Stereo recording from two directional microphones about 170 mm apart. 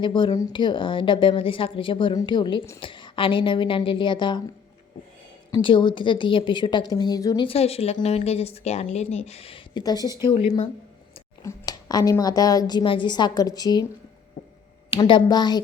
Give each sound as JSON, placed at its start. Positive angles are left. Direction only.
{"t": 0.0, "sound": "a woman's voice", "side_deg": 25}
{"t": 5.5, "sound": "a woman's voice", "side_deg": 30}
{"t": 11.4, "sound": "a woman's voice", "side_deg": 20}
{"t": 14.8, "sound": "a woman's voice", "side_deg": 30}